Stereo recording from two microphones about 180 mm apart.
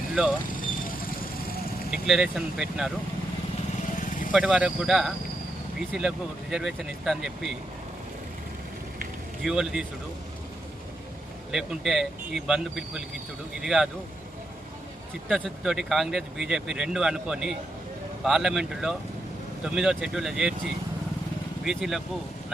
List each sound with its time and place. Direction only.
0.6 s vehicle: 50° left (ahead or behind)
1.9 s speech: 5° right (ahead or behind)
4.3 s speech: 5° right (ahead or behind)
9.4 s speech: 5° right (ahead or behind)
11.5 s speech: centre (ahead or behind)
15.3 s speech: centre (ahead or behind)
21.6 s speech: centre (ahead or behind)